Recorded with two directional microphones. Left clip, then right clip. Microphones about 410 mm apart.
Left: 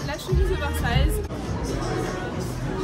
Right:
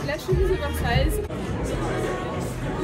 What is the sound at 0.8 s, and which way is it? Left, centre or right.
Speech, centre.